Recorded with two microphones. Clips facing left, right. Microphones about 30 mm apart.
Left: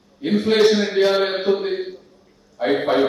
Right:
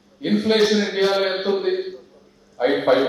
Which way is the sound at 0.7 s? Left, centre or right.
Centre.